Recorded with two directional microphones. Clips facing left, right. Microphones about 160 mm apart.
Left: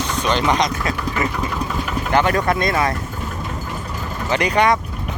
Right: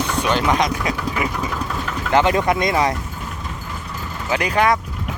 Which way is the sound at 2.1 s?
20° right (ahead or behind).